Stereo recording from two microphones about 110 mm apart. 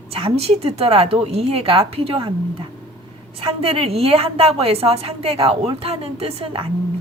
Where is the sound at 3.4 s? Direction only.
60° right (ahead or behind).